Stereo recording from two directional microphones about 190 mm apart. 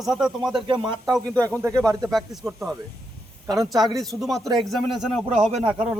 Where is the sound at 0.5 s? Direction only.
25° right (ahead or behind).